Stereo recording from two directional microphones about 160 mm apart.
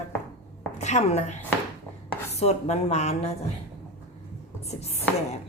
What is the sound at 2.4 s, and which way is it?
Speech, 40° left (ahead or behind).